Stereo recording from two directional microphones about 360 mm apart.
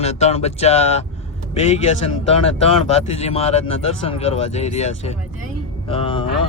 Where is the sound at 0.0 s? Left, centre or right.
Centre.